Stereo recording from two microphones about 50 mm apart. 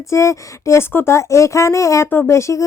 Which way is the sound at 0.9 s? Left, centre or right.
Left.